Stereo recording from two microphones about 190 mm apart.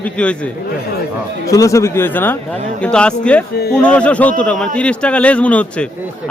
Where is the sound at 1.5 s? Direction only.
15° left (ahead or behind).